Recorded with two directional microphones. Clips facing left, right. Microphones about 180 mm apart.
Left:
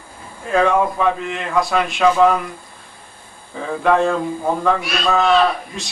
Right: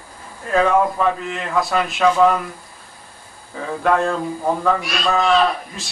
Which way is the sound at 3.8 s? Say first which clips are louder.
Left 2 dB; centre (ahead or behind).